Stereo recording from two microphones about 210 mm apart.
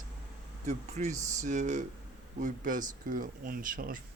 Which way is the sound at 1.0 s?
35° right (ahead or behind).